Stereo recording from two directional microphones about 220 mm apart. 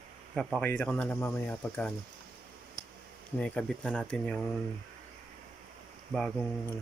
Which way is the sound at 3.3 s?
5° left (ahead or behind).